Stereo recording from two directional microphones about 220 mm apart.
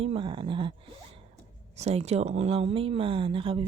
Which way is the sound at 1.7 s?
30° right (ahead or behind).